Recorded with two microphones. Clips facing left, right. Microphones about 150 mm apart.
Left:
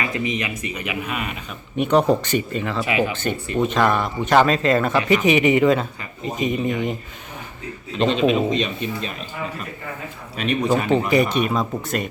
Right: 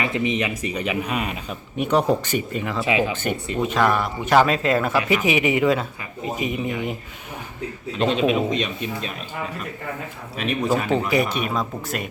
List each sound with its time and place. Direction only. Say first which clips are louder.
0.0 s speech: right 2 dB; 25° right (ahead or behind)
1.8 s speech: left 3 dB; 10° right (ahead or behind)
3.6 s speech: left 1 dB; 5° right (ahead or behind)
7.9 s speech: left 2 dB; 5° right (ahead or behind)
10.3 s speech: left 2 dB; centre (ahead or behind)